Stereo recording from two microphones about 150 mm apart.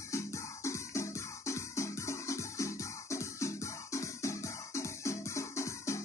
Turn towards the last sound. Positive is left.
turn(degrees=20)  # may be behind; listen again after turning